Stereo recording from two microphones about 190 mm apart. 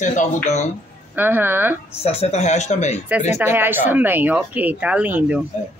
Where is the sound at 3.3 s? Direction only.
10° right (ahead or behind).